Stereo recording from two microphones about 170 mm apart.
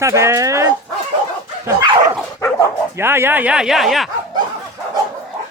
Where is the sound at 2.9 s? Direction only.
15° right (ahead or behind).